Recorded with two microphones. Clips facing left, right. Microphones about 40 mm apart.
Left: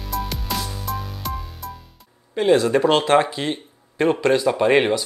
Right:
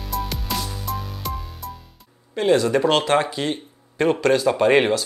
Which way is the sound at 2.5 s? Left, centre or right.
Left.